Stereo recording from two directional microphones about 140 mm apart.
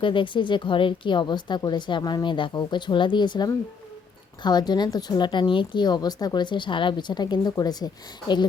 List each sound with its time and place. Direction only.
0.0 s a woman's voice: 35° left (ahead or behind)